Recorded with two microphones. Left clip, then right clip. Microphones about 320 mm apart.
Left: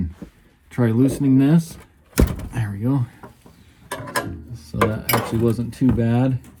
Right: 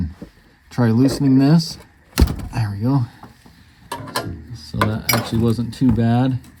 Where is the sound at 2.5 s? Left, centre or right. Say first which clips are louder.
Right 4 dB; right.